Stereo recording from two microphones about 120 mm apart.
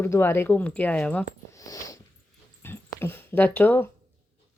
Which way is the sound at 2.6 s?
20° left (ahead or behind).